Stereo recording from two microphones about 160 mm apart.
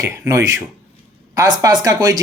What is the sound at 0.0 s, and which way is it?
Speech, 20° right (ahead or behind).